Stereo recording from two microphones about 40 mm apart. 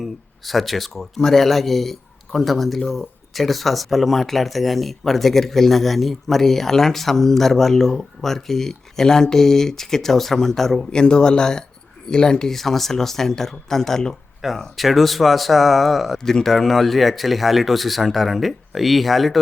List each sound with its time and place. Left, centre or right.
0.0 s speech: centre
10.9 s speech: centre
12.5 s speech: centre
14.6 s speech: centre